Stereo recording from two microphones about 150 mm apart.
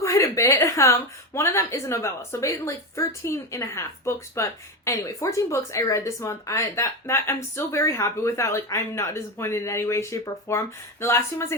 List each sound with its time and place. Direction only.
0.0 s a woman's voice: 20° left (ahead or behind)